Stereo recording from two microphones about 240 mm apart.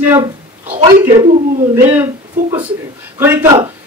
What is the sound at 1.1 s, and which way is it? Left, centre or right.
Speech, right.